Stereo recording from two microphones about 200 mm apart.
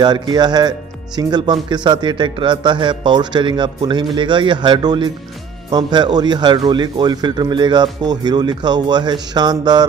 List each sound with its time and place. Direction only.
0.0 s speech: 20° right (ahead or behind)